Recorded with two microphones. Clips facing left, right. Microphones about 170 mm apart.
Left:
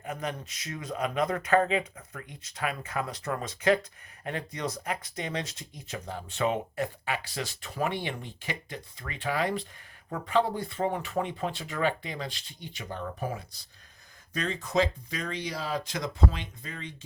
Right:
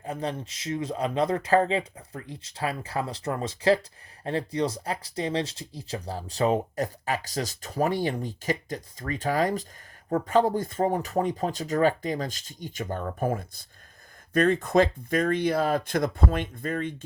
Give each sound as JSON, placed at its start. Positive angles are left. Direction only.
{"t": 0.0, "sound": "speech", "side_deg": -30}